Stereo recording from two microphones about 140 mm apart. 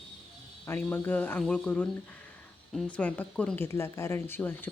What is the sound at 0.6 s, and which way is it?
Speech, 15° left (ahead or behind).